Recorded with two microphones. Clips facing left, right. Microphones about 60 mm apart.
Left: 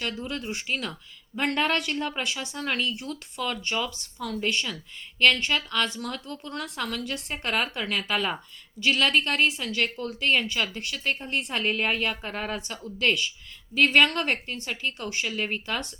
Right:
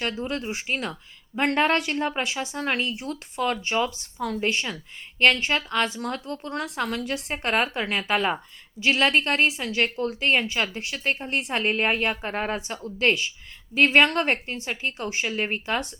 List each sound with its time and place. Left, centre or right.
0.0 s a woman's voice: right
3.3 s a woman's voice: right
5.2 s a woman's voice: centre
5.5 s a woman's voice: right
7.4 s a woman's voice: right
11.2 s a woman's voice: centre
11.5 s a woman's voice: right